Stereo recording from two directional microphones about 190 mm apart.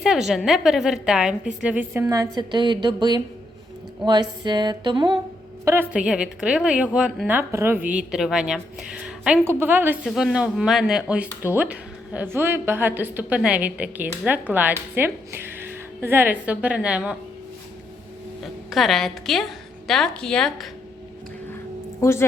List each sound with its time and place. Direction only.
0.0 s a woman's voice: centre (ahead or behind); by 3.2 s 25° right (ahead or behind)
4.0 s a sound: 20° right (ahead or behind)
5.9 s a woman's voice: 5° right (ahead or behind)
18.7 s a woman's voice: centre (ahead or behind)
22.0 s a woman's voice: 15° left (ahead or behind)